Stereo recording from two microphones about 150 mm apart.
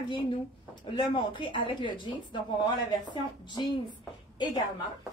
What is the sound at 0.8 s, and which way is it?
A woman's voice, 30° left (ahead or behind).